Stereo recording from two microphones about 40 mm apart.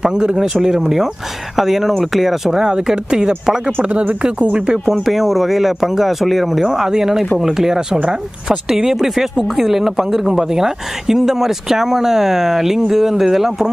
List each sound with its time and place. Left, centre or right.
0.0 s speech: centre
3.9 s speech: right
5.0 s speech: centre